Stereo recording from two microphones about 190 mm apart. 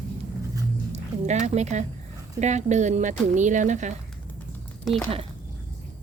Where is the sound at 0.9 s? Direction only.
35° right (ahead or behind).